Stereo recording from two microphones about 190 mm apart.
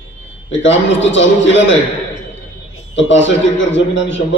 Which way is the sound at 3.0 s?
75° left (ahead or behind).